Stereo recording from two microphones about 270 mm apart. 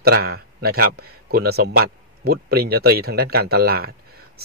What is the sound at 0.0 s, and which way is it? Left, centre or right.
Speech, right.